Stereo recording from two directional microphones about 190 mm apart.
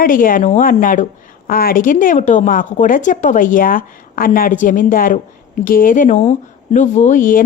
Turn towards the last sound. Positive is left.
turn(degrees=45)  # may be behind; listen again after turning